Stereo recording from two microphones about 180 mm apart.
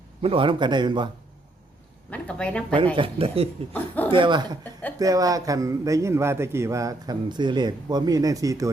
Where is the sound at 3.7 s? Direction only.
10° left (ahead or behind).